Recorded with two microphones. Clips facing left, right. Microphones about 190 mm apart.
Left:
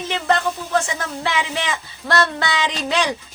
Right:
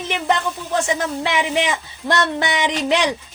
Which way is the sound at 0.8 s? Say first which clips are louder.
Right 4 dB; 15° right (ahead or behind).